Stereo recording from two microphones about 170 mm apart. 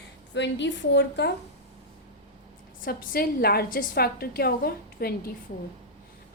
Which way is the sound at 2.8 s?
65° left (ahead or behind).